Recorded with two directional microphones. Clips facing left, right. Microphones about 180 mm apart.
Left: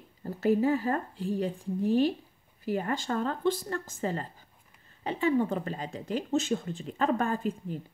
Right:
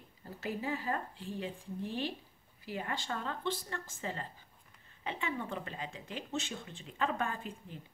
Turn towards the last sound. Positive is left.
turn(degrees=40)  # may be behind; listen again after turning